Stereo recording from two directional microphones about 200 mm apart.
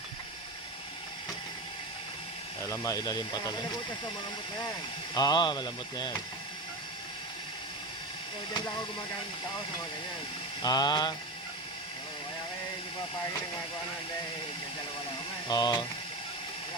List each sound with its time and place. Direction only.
2.6 s speech: 15° left (ahead or behind)
5.1 s speech: 20° left (ahead or behind)
10.6 s speech: 20° left (ahead or behind)
15.4 s speech: 20° left (ahead or behind)